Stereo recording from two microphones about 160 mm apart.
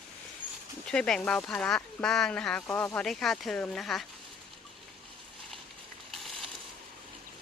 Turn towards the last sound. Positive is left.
turn(degrees=0)  # may be behind; listen again after turning